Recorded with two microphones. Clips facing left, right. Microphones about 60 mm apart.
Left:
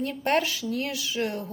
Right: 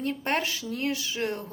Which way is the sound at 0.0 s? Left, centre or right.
Right.